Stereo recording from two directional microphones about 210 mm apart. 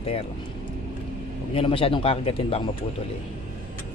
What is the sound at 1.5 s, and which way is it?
Speech, 25° left (ahead or behind).